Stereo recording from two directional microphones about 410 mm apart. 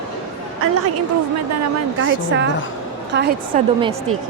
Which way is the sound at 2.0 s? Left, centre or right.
Right.